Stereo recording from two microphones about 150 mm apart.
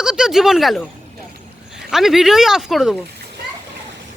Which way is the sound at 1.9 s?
Centre (ahead or behind).